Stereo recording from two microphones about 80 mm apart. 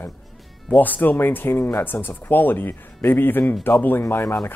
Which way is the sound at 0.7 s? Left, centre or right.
Left.